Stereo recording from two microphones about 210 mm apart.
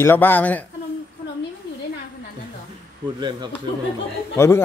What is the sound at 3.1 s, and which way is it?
Speech, 20° right (ahead or behind).